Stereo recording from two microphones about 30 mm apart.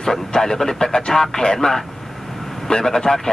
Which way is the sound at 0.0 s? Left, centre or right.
Centre.